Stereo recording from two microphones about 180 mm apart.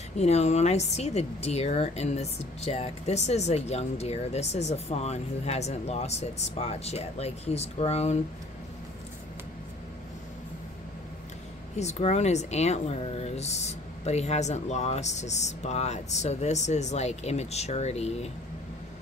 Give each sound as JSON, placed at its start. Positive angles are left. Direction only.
{"t": 0.2, "sound": "a woman's voice", "side_deg": 35}
{"t": 11.7, "sound": "a woman's voice", "side_deg": 40}